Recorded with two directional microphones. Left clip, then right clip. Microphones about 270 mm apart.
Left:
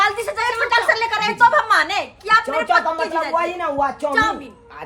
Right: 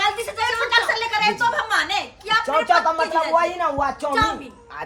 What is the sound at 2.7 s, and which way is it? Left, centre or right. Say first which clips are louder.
Speech: even; centre.